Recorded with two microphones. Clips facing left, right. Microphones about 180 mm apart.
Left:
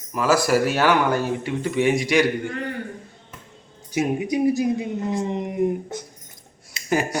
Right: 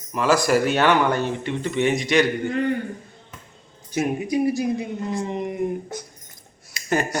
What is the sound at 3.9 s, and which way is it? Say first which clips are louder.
Speech: even; 15° left (ahead or behind).